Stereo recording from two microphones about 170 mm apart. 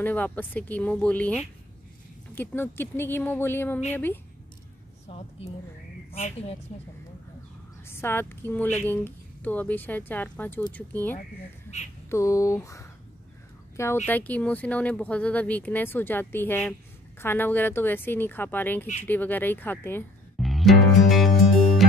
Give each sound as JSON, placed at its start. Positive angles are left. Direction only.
{"t": 0.0, "sound": "speech", "side_deg": 10}
{"t": 5.0, "sound": "a woman's voice", "side_deg": 40}
{"t": 7.9, "sound": "speech", "side_deg": 15}
{"t": 11.7, "sound": "speech", "side_deg": 45}
{"t": 12.1, "sound": "speech", "side_deg": 20}
{"t": 14.0, "sound": "speech", "side_deg": 10}
{"t": 20.3, "sound": "music", "side_deg": 0}